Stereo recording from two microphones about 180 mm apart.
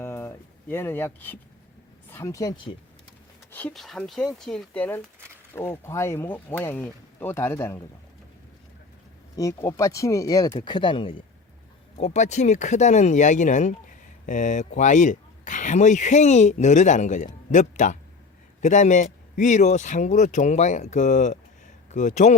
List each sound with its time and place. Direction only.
0.0 s a sound: 15° left (ahead or behind)
2.0 s speech: 15° left (ahead or behind)
3.5 s speech: 5° left (ahead or behind)
9.3 s speech: 20° left (ahead or behind); by 22.4 s 40° left (ahead or behind)